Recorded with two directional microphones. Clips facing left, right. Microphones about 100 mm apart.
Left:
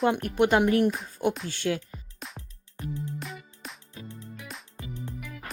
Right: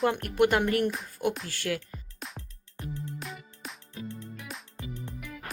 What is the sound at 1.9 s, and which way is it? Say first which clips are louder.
Music: even; centre (ahead or behind).